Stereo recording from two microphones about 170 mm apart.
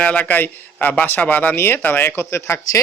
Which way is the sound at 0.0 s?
10° left (ahead or behind).